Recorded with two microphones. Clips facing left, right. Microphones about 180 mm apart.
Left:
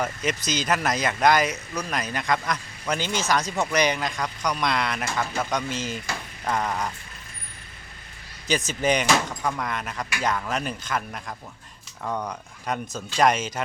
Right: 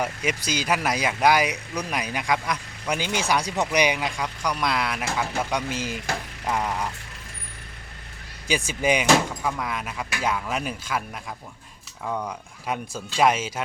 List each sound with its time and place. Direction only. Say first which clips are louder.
0.0 s speech: even; 10° right (ahead or behind)
8.4 s speech: even; 10° right (ahead or behind)